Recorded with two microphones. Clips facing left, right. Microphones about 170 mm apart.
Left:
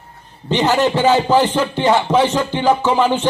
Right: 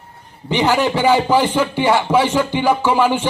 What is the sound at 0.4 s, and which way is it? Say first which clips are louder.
Music: left 1 dB; 10° right (ahead or behind).